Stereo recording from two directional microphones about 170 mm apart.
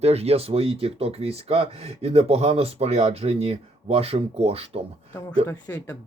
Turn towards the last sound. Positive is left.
turn(degrees=10)  # may be behind; listen again after turning